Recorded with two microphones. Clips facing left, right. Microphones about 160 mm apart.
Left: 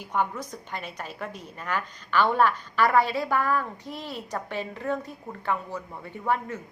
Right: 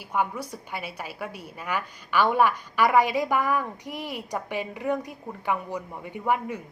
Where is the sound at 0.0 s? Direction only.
10° right (ahead or behind).